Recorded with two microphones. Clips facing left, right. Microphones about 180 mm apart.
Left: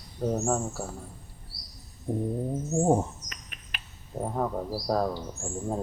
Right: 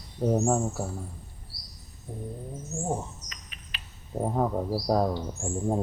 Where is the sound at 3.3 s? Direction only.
55° left (ahead or behind).